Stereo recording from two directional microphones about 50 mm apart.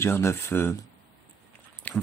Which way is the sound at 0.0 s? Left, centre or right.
Left.